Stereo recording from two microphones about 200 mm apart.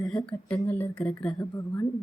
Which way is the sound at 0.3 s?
5° left (ahead or behind).